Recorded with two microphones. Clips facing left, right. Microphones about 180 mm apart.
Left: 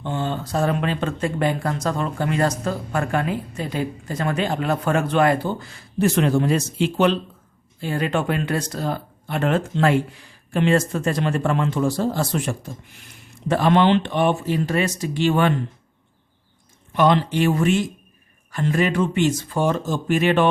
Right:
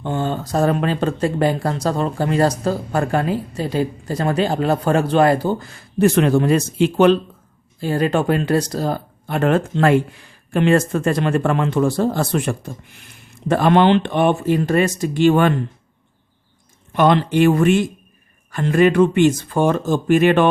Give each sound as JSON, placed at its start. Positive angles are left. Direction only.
{"t": 0.0, "sound": "speech", "side_deg": -45}
{"t": 7.8, "sound": "speech", "side_deg": -40}
{"t": 16.9, "sound": "speech", "side_deg": -55}